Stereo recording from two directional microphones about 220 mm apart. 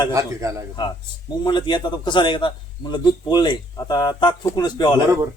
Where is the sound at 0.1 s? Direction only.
15° right (ahead or behind).